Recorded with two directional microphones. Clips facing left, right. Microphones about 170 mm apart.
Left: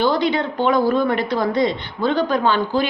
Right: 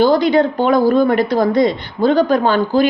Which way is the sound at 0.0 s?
40° right (ahead or behind).